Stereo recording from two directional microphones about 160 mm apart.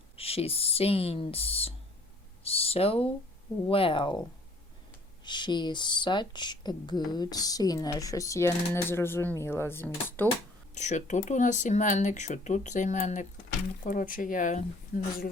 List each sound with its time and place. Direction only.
0.2 s speech: 35° left (ahead or behind)
2.4 s a sound: 35° left (ahead or behind)
3.7 s speech: 35° left (ahead or behind)
5.2 s speech: 30° left (ahead or behind); by 10.2 s 15° left (ahead or behind)
10.8 s speech: 50° left (ahead or behind)